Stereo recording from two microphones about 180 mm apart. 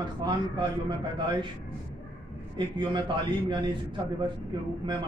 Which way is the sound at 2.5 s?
25° right (ahead or behind).